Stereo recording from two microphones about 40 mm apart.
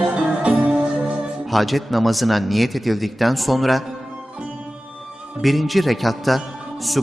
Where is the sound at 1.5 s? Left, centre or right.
Centre.